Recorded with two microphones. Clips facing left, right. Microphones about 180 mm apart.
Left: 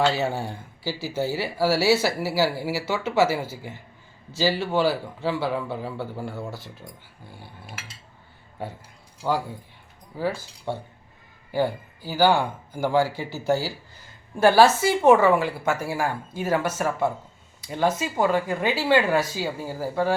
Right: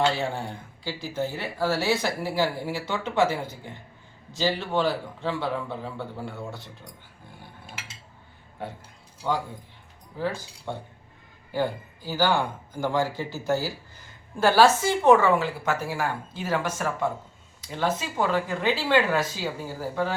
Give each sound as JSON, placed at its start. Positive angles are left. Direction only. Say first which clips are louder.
{"t": 0.0, "sound": "a man's voice", "louder": "left 2 dB", "side_deg": 5}
{"t": 10.1, "sound": "speech", "louder": "left 2 dB", "side_deg": 10}
{"t": 11.5, "sound": "speech", "louder": "left 3 dB", "side_deg": 10}